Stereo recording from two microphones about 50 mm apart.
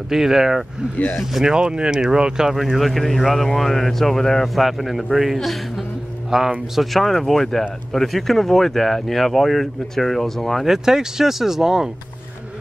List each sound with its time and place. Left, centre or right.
0.1 s speech: centre
2.5 s speech: centre
6.7 s speech: centre
10.7 s speech: centre